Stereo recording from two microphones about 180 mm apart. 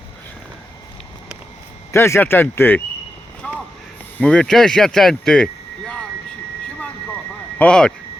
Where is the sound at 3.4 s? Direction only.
5° left (ahead or behind).